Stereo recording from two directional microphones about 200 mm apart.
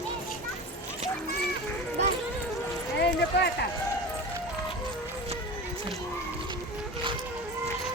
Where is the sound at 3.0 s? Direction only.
60° left (ahead or behind).